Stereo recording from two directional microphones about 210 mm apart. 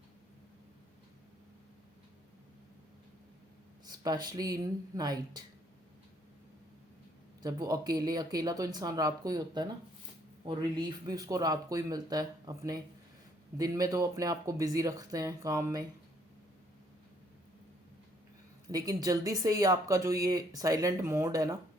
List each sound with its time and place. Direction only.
3.8 s speech: 20° right (ahead or behind)
7.4 s speech: 15° right (ahead or behind)
18.7 s speech: 15° right (ahead or behind)